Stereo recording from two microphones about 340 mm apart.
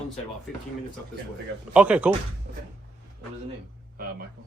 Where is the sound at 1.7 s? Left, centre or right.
Centre.